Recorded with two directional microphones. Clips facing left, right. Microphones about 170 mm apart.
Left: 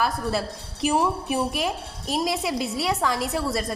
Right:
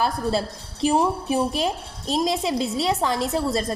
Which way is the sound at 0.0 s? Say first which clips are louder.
Right 2 dB; 30° right (ahead or behind).